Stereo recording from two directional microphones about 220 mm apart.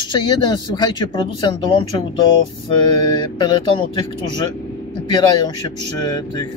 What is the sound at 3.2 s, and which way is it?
Speech, 20° left (ahead or behind).